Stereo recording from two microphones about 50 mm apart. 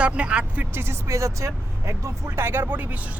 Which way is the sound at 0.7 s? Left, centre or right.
Right.